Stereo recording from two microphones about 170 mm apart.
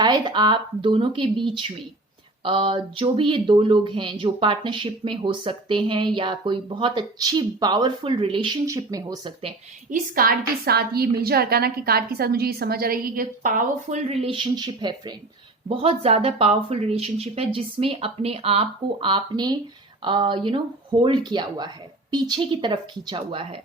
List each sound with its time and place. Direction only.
0.0 s speech: 25° right (ahead or behind)
8.6 s speech: 20° right (ahead or behind)
9.9 s a woman's voice: 60° right (ahead or behind)
14.1 s speech: 35° right (ahead or behind)